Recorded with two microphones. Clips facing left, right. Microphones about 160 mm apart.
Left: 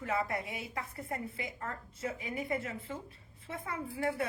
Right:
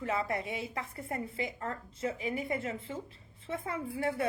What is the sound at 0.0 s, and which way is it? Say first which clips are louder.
A woman's voice: right 1 dB; 25° right (ahead or behind).